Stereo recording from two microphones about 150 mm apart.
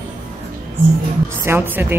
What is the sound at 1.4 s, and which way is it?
Speech, 15° right (ahead or behind).